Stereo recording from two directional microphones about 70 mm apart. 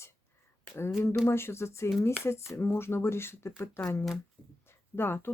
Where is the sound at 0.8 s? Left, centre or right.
Left.